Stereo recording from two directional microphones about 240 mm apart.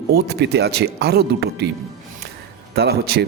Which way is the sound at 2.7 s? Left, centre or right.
Right.